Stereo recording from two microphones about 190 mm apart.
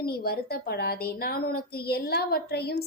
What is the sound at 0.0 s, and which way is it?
A woman's voice, 55° left (ahead or behind).